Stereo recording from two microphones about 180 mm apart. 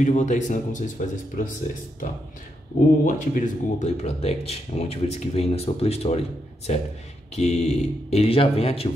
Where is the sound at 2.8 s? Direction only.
55° left (ahead or behind).